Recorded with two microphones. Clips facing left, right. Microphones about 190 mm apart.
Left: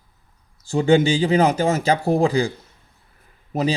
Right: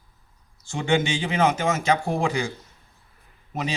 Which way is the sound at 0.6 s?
35° left (ahead or behind).